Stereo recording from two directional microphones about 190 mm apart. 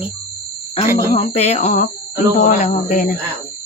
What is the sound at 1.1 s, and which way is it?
Speech, 35° left (ahead or behind).